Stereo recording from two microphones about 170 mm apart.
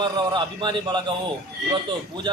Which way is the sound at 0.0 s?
25° right (ahead or behind).